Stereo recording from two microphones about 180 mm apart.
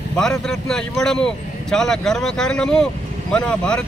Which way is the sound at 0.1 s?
5° left (ahead or behind).